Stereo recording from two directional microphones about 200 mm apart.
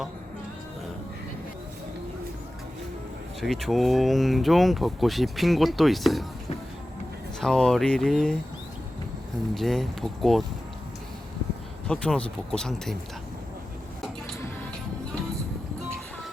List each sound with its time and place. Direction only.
3.4 s speech: centre (ahead or behind)
7.4 s speech: 5° left (ahead or behind)
9.6 s speech: centre (ahead or behind)
11.9 s speech: 5° left (ahead or behind)